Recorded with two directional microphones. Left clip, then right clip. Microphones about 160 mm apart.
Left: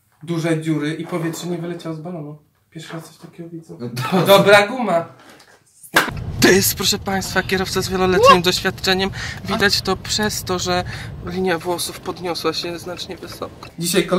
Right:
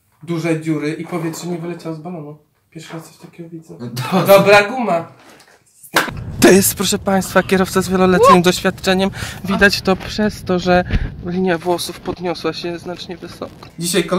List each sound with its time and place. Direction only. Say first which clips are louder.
0.3 s speech: right 2 dB; 10° left (ahead or behind)
4.3 s speech: right 2 dB; 10° left (ahead or behind)
6.4 s speech: right 3 dB; 40° right (ahead or behind)
13.7 s speech: right 1 dB; 5° right (ahead or behind)